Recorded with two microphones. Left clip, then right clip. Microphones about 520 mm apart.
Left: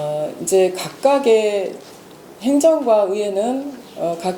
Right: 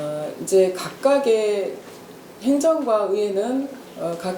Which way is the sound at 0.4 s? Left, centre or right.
Left.